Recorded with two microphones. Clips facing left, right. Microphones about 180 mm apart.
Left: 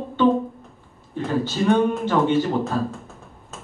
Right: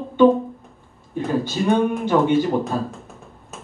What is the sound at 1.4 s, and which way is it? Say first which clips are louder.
Speech: left 2 dB; 15° right (ahead or behind).